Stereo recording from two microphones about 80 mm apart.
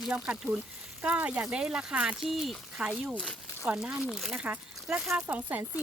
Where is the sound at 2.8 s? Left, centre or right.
Centre.